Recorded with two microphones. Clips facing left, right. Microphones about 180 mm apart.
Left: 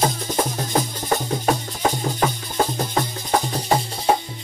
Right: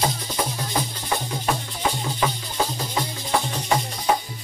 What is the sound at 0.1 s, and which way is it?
Music, 45° left (ahead or behind).